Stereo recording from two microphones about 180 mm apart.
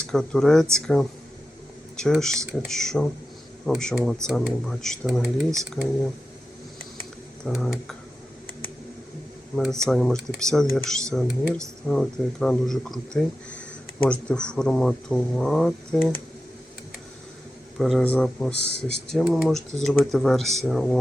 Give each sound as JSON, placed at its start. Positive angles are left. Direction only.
{"t": 0.0, "sound": "speech", "side_deg": 5}
{"t": 7.4, "sound": "speech", "side_deg": 0}
{"t": 9.8, "sound": "speech", "side_deg": 5}
{"t": 17.7, "sound": "speech", "side_deg": 0}